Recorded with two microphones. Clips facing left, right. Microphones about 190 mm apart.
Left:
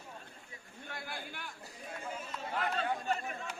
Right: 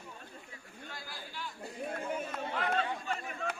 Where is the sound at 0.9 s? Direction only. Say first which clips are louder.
Left 4 dB; 60° left (ahead or behind).